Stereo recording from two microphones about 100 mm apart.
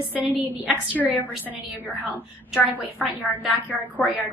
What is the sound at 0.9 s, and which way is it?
Speech, 15° right (ahead or behind).